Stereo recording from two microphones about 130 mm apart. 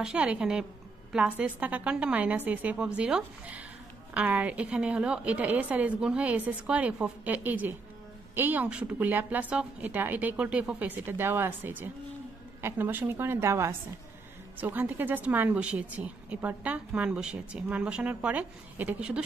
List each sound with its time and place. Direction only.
0.0 s speech: 10° right (ahead or behind)